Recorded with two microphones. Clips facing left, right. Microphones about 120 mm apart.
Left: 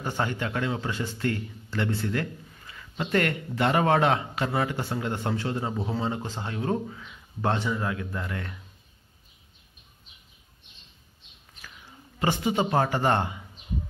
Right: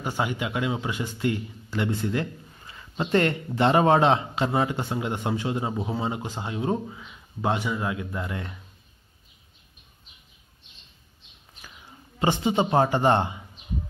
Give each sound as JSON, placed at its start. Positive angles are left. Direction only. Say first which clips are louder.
{"t": 0.0, "sound": "speech", "louder": "right 1 dB", "side_deg": -10}
{"t": 12.2, "sound": "speech", "louder": "right 2 dB", "side_deg": -25}